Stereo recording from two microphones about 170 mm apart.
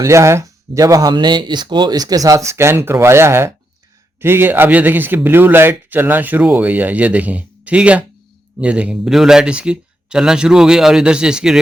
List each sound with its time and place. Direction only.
0.0 s speech: 15° right (ahead or behind)